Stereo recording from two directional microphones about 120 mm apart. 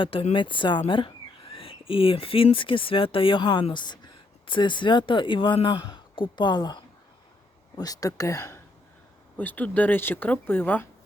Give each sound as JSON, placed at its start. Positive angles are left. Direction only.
{"t": 0.0, "sound": "speech", "side_deg": 45}
{"t": 9.4, "sound": "speech", "side_deg": 15}